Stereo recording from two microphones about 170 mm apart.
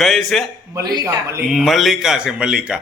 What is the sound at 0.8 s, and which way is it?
Speech, 20° right (ahead or behind).